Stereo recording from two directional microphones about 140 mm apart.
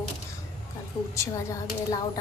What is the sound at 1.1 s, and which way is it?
Speech, 25° left (ahead or behind).